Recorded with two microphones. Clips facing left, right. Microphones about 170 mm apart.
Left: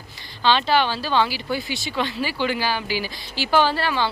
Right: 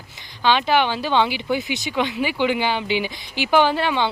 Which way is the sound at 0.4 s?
15° right (ahead or behind).